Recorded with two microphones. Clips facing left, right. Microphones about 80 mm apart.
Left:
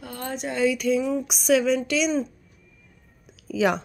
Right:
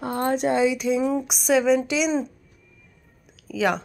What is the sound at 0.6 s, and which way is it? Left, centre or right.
Speech, centre.